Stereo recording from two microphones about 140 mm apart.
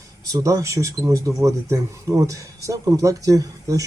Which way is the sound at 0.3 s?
25° right (ahead or behind).